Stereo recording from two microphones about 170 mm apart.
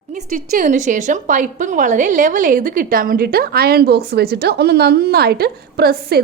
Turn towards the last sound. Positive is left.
turn(degrees=-65)  # may be behind; listen again after turning